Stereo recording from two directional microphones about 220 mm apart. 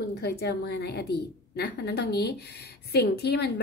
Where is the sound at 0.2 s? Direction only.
50° left (ahead or behind).